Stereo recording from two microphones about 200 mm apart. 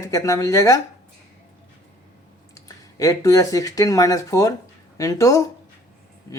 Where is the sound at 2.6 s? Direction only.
15° left (ahead or behind).